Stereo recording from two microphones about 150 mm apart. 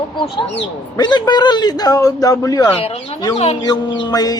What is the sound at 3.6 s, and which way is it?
Speech, 30° left (ahead or behind).